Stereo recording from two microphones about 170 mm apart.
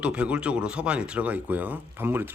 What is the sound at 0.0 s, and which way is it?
Speech, 5° right (ahead or behind).